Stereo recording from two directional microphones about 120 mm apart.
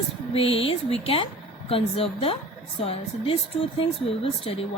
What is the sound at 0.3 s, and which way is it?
Speech, 50° left (ahead or behind).